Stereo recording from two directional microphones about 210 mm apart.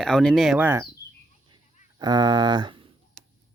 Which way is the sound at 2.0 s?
20° right (ahead or behind).